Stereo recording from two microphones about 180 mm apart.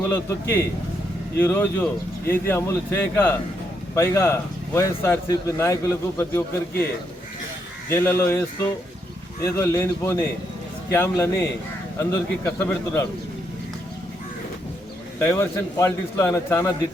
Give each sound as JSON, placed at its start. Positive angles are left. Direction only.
{"t": 0.1, "sound": "speech", "side_deg": 15}
{"t": 7.9, "sound": "speech", "side_deg": 15}
{"t": 15.2, "sound": "speech", "side_deg": 15}